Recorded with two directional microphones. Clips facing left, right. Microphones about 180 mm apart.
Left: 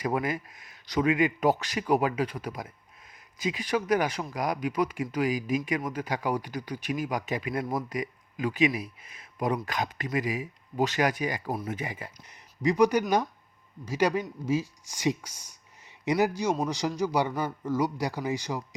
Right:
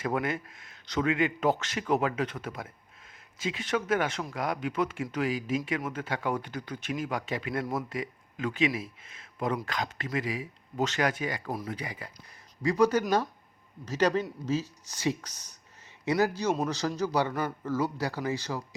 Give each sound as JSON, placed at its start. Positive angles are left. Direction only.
{"t": 0.0, "sound": "speech", "side_deg": 5}
{"t": 7.9, "sound": "speech", "side_deg": 15}